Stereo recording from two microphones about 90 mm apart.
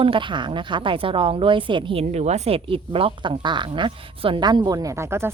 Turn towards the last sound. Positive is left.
turn(degrees=-30)  # may be behind; listen again after turning